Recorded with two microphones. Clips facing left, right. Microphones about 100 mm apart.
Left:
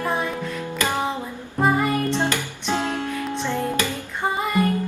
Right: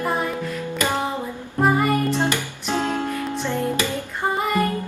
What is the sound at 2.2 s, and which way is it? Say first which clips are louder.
Music: right 1 dB; 15° right (ahead or behind).